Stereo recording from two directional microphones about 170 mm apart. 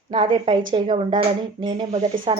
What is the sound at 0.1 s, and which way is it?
Speech, 30° right (ahead or behind).